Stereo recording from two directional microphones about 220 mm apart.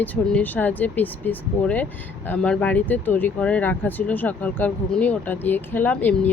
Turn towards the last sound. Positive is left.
turn(degrees=10)  # may be behind; listen again after turning